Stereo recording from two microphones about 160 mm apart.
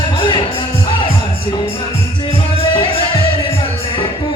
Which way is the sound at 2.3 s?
35° left (ahead or behind).